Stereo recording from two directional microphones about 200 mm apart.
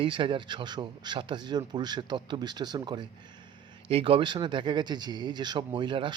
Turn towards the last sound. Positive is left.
turn(degrees=-25)  # may be behind; listen again after turning